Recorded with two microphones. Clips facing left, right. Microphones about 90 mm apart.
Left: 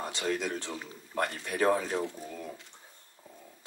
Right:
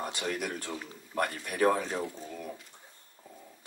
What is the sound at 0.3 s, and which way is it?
Speech, 25° left (ahead or behind).